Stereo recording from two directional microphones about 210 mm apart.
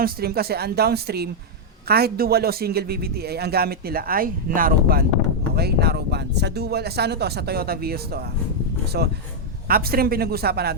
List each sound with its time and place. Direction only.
0.0 s a man's voice: 45° right (ahead or behind)